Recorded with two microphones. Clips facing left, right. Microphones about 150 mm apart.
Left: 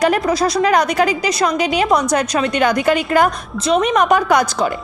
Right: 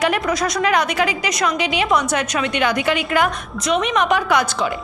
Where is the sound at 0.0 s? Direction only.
35° left (ahead or behind).